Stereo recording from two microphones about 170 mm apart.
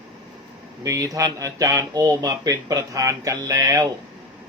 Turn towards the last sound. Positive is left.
turn(degrees=-15)  # may be behind; listen again after turning